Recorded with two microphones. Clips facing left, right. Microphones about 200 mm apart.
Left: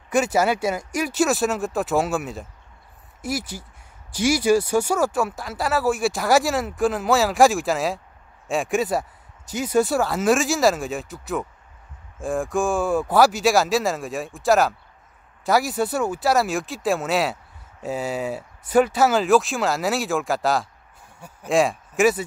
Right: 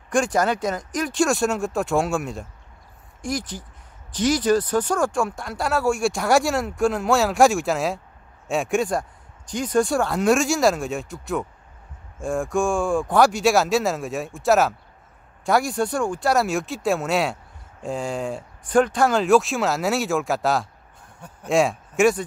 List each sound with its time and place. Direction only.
0.1 s speech: 5° left (ahead or behind)